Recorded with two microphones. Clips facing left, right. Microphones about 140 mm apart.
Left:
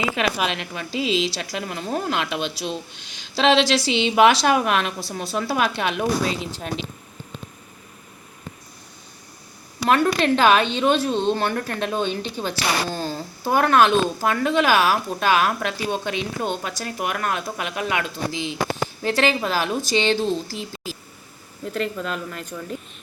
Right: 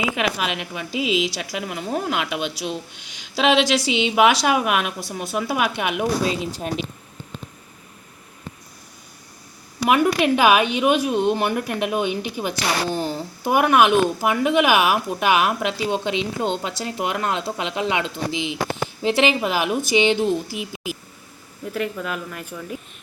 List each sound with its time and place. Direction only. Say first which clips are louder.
0.3 s a woman's voice: left 1 dB; 10° right (ahead or behind)
9.8 s a woman's voice: right 1 dB; 10° right (ahead or behind)